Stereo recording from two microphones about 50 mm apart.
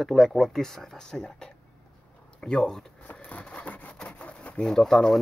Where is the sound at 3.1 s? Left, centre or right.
Left.